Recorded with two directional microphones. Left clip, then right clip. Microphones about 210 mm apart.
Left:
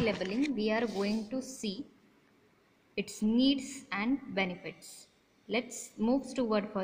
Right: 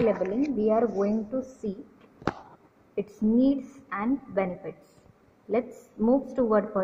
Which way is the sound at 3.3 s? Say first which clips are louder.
Right 5 dB; 10° left (ahead or behind).